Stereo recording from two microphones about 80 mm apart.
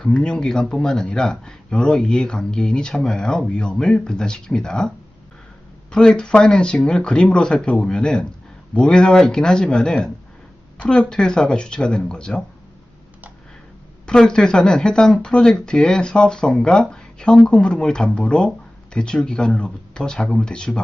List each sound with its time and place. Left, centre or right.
0.0 s speech: centre
5.9 s speech: centre
14.1 s speech: centre